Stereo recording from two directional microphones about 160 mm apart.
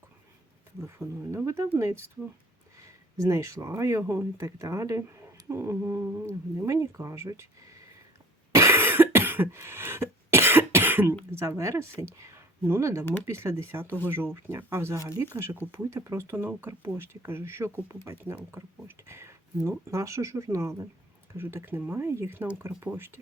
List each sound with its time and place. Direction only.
0.9 s speech: 15° right (ahead or behind)
8.5 s cough: 15° right (ahead or behind)
11.3 s speech: 15° right (ahead or behind)